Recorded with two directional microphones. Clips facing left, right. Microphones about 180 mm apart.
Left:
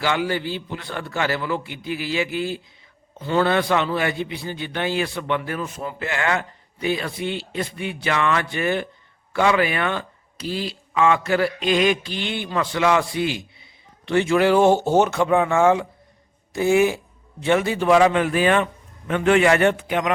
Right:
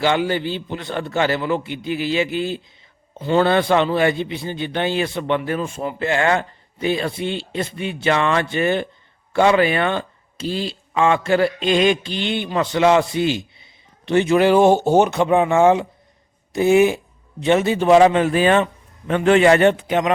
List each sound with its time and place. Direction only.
0.0 s speech: 25° right (ahead or behind)